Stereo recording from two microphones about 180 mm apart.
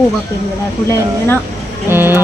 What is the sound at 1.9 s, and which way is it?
Speech, 10° right (ahead or behind).